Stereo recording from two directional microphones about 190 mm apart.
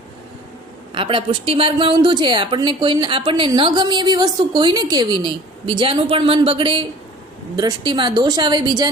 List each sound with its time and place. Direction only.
0.9 s a woman's voice: 25° right (ahead or behind)